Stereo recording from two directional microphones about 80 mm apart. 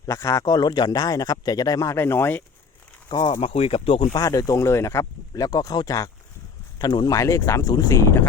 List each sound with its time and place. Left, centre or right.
0.0 s speech: left
0.4 s speech: left
2.0 s speech: left
3.1 s speech: left
4.2 s speech: left
5.3 s speech: left